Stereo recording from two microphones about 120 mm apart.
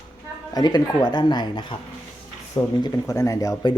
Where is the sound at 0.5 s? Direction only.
35° left (ahead or behind).